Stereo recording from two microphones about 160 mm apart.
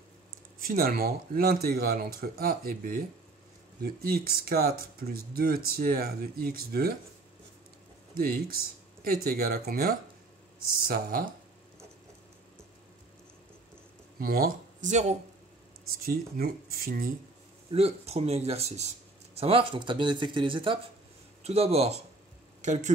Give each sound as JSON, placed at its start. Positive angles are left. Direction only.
{"t": 0.7, "sound": "speech", "side_deg": -70}
{"t": 8.1, "sound": "speech", "side_deg": -65}
{"t": 14.2, "sound": "speech", "side_deg": -65}
{"t": 14.9, "sound": "speech", "side_deg": -45}
{"t": 16.1, "sound": "speech", "side_deg": -70}
{"t": 17.6, "sound": "speech", "side_deg": -40}